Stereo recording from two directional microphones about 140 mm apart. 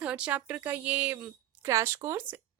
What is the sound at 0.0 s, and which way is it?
A woman's voice, 10° right (ahead or behind).